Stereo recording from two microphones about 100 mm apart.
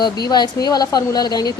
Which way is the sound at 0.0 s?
45° left (ahead or behind).